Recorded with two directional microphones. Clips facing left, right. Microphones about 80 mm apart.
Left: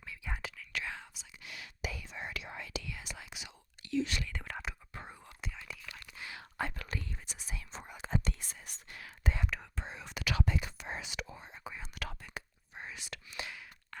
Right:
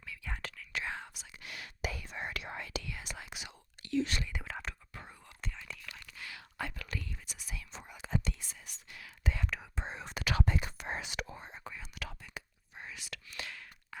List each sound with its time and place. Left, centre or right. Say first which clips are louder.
0.3 s whispering: left 1 dB; centre
0.7 s whispering: right 2 dB; right
0.9 s whispering: right 4 dB; right
4.4 s whispering: even; centre
4.9 s whispering: left 2 dB; left
5.4 s whispering: right 1 dB; centre
6.1 s whispering: left 1 dB; left
9.7 s whispering: right 2 dB; right
11.9 s whispering: left 2 dB; left
12.7 s whispering: left 1 dB; left
13.9 s a sound: right 1 dB; centre